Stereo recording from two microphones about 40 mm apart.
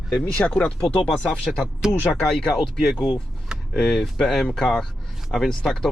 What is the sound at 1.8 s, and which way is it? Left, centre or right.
Speech, centre.